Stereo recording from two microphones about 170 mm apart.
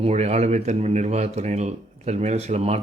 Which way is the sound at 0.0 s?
40° right (ahead or behind).